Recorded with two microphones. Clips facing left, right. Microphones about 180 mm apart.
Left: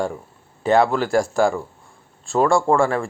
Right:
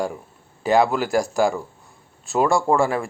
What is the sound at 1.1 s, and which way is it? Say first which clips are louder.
Speech: left 2 dB; 15° right (ahead or behind).